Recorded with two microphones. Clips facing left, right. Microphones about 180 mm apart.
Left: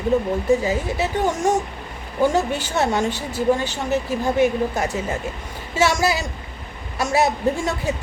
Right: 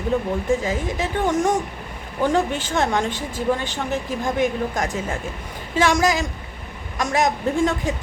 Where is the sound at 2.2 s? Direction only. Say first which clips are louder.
Left 1 dB; 10° left (ahead or behind).